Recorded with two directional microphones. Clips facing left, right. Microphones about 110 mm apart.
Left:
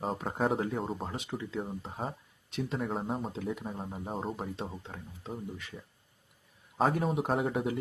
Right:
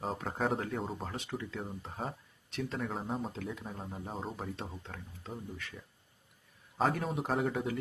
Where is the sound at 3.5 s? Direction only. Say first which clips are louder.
Left 4 dB; 15° left (ahead or behind).